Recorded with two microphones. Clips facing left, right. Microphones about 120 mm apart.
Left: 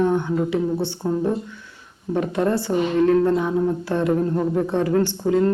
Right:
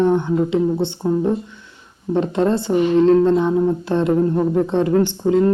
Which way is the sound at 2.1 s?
25° right (ahead or behind).